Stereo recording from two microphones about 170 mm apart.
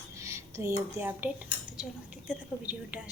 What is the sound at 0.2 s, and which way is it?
Speech, 15° right (ahead or behind).